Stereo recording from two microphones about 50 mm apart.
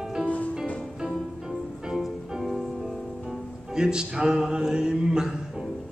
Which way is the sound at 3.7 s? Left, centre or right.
Centre.